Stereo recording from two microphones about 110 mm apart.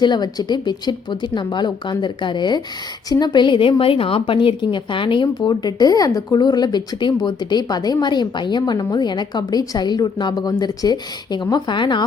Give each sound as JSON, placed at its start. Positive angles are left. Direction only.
{"t": 0.0, "sound": "a woman's voice", "side_deg": 40}